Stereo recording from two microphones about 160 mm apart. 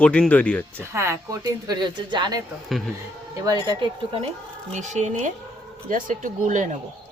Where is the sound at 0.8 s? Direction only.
15° right (ahead or behind).